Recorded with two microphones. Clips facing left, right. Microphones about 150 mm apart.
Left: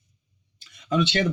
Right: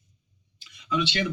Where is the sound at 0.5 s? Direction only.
45° left (ahead or behind).